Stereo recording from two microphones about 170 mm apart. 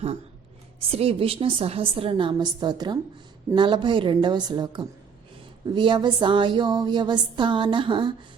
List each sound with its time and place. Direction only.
0.8 s a woman's voice: 35° right (ahead or behind)